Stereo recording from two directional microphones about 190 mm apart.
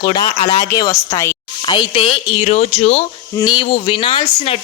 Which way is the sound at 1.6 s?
25° left (ahead or behind).